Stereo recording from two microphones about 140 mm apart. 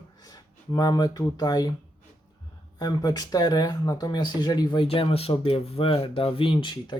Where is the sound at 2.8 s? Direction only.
30° left (ahead or behind).